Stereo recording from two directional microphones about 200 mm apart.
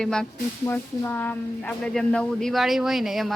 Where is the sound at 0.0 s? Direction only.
5° left (ahead or behind).